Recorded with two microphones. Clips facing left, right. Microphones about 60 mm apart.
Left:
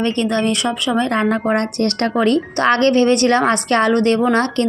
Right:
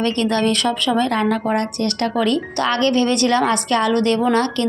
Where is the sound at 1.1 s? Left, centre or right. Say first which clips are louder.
Left 2 dB; left.